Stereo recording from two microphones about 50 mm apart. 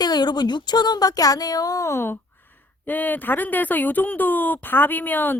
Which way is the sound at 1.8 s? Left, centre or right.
Left.